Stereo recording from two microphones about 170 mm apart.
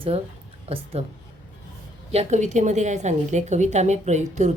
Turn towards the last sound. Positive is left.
turn(degrees=-45)  # may be behind; listen again after turning